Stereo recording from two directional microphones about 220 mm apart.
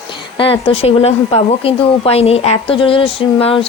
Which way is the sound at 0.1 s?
25° left (ahead or behind).